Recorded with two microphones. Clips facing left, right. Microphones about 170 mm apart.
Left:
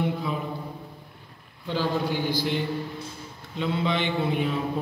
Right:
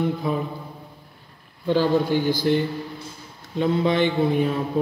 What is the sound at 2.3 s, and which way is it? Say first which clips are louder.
A man's voice: right 5 dB; 40° right (ahead or behind).